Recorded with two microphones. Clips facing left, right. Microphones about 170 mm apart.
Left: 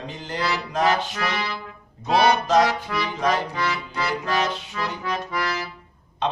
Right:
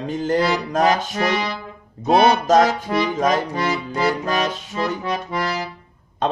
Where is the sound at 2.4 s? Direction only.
45° right (ahead or behind).